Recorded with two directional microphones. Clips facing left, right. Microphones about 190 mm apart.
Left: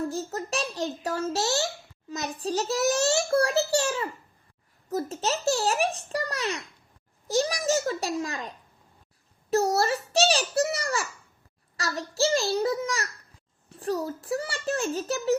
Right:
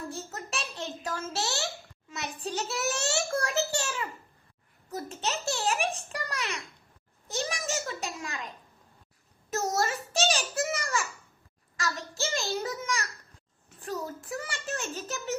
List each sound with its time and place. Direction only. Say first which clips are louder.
0.1 s a child's voice: left 7 dB; 35° left (ahead or behind)